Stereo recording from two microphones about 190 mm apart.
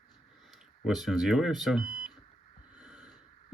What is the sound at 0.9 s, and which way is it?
Speech, centre (ahead or behind).